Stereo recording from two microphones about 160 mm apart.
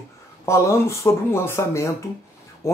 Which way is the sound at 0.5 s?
20° left (ahead or behind).